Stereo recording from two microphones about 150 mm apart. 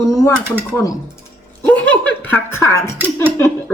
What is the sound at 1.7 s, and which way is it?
Giggle, 10° left (ahead or behind).